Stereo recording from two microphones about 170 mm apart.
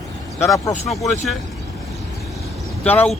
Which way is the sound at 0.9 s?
Centre (ahead or behind).